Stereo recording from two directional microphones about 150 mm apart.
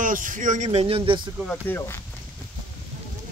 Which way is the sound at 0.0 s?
65° right (ahead or behind).